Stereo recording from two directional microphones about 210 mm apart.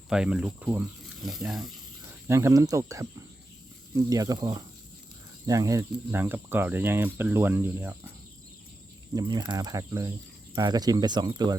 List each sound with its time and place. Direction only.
0.1 s speech: 5° right (ahead or behind)
2.2 s speech: 15° right (ahead or behind)
9.1 s speech: 20° right (ahead or behind)